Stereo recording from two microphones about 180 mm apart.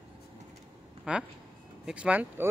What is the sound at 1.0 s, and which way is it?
Speech, 5° right (ahead or behind).